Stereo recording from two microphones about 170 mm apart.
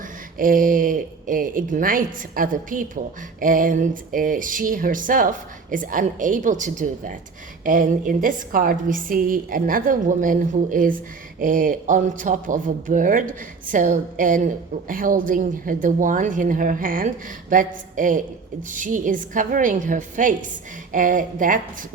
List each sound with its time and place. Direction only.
0.3 s a woman's voice: 55° right (ahead or behind)